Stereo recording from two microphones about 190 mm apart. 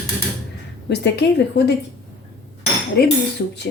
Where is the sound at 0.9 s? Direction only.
65° left (ahead or behind).